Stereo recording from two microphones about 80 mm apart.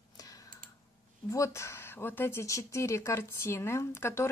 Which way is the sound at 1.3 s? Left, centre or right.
Left.